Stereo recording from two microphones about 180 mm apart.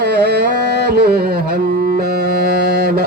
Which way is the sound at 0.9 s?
65° right (ahead or behind).